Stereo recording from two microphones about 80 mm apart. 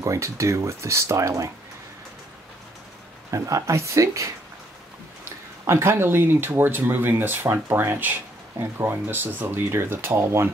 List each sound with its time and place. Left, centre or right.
0.0 s speech: right
3.3 s speech: right
5.7 s speech: right